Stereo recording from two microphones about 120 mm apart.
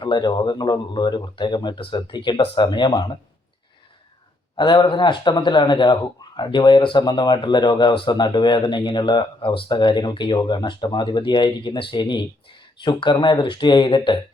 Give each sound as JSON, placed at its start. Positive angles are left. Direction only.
{"t": 0.0, "sound": "speech", "side_deg": 40}
{"t": 4.5, "sound": "speech", "side_deg": 40}